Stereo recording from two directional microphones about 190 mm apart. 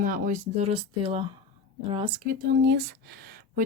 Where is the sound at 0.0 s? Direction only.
45° right (ahead or behind); by 1.2 s 30° right (ahead or behind).